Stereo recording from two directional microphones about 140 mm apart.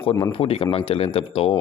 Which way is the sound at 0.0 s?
40° left (ahead or behind).